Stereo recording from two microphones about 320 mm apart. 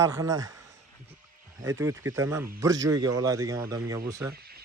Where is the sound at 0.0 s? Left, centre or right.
Centre.